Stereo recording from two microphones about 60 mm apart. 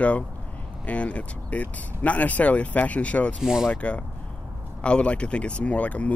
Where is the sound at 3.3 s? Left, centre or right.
Centre.